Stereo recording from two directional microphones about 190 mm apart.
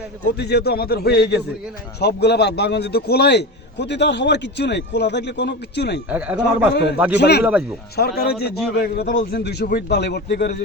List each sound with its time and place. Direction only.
0.3 s a man's voice: 60° left (ahead or behind)
6.1 s a man's voice: 5° right (ahead or behind)
7.2 s a man's voice: 60° left (ahead or behind)